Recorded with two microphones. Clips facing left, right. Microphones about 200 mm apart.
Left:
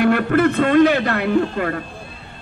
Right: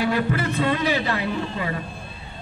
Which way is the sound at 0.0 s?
60° left (ahead or behind).